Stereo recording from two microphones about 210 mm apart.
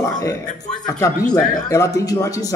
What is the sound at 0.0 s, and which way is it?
A man's voice, 15° left (ahead or behind).